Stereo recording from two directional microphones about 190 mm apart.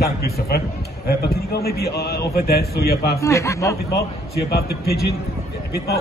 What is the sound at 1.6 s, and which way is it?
A man's voice, 55° left (ahead or behind).